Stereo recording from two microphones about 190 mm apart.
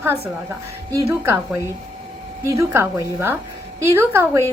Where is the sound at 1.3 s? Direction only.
15° right (ahead or behind).